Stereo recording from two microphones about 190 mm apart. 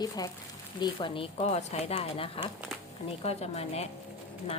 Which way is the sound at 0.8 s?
25° left (ahead or behind).